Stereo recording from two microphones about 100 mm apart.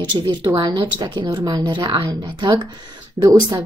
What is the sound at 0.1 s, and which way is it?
Speech, 50° right (ahead or behind).